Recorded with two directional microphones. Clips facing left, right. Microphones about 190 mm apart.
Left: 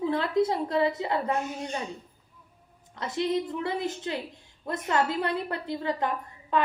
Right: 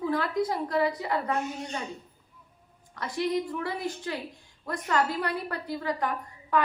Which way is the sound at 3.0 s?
20° left (ahead or behind).